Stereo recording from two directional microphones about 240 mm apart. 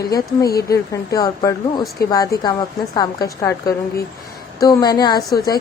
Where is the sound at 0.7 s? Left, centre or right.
Centre.